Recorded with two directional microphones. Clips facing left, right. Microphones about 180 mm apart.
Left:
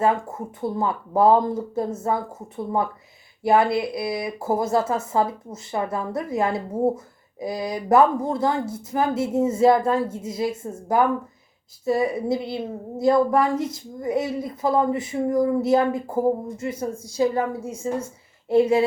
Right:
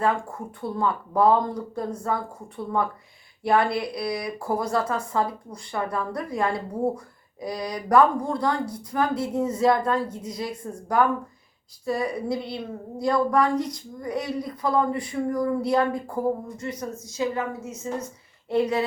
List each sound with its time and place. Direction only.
0.0 s speech: 20° left (ahead or behind)
3.4 s a woman's voice: 25° left (ahead or behind)